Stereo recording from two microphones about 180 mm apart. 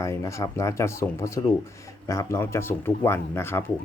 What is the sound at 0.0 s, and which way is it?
Speech, 15° left (ahead or behind).